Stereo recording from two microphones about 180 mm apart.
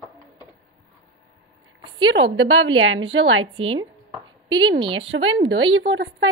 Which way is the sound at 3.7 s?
25° right (ahead or behind).